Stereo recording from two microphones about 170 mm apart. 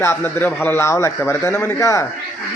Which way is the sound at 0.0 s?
15° left (ahead or behind).